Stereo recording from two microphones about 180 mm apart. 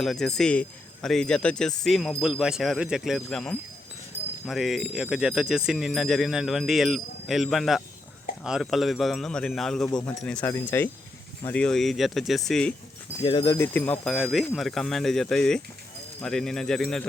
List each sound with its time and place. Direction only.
0.0 s a man's voice: centre (ahead or behind)
9.9 s speech: 20° left (ahead or behind)
10.2 s a man's voice: 10° left (ahead or behind)
13.2 s a man's voice: 25° left (ahead or behind); by 17.0 s 5° left (ahead or behind)